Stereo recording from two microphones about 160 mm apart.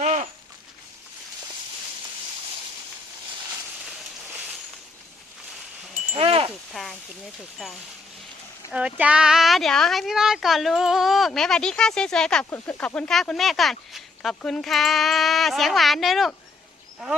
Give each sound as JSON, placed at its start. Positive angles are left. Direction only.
{"t": 0.0, "sound": "a sound", "side_deg": -45}
{"t": 6.1, "sound": "chime", "side_deg": -35}
{"t": 8.7, "sound": "speech", "side_deg": -5}